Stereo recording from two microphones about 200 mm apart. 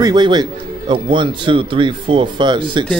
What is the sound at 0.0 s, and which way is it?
Speech, 20° right (ahead or behind).